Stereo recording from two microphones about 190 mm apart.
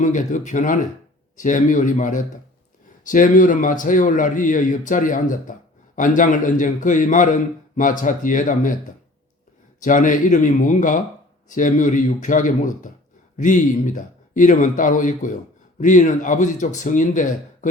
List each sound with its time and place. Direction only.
0.0 s a man's voice: 40° left (ahead or behind)
9.8 s a man's voice: 45° left (ahead or behind)